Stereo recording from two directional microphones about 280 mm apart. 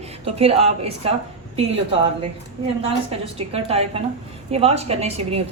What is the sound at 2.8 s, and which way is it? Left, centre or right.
A woman's voice, right.